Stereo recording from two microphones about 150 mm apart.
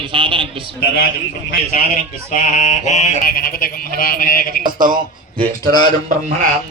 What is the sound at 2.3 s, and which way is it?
Mantra, 55° left (ahead or behind).